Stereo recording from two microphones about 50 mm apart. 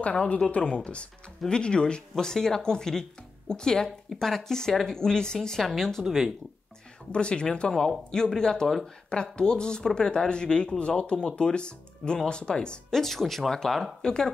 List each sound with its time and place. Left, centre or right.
0.0 s speech: left; by 6.0 s centre
6.0 s speech: centre
7.1 s speech: centre
13.0 s speech: centre